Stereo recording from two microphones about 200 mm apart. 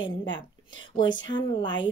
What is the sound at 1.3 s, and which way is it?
Speech, 20° left (ahead or behind).